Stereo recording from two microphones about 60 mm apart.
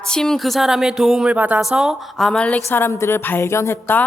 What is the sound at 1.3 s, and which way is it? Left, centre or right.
Speech, right.